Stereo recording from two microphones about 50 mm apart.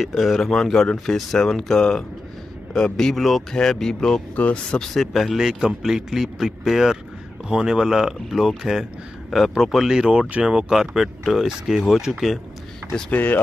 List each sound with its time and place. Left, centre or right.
0.0 s speech: centre
4.4 s speech: left
4.7 s a man's voice: centre
13.1 s speech: left